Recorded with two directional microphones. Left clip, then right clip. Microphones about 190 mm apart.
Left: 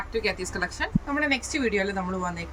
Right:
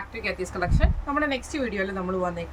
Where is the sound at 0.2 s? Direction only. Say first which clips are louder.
Even; 20° right (ahead or behind).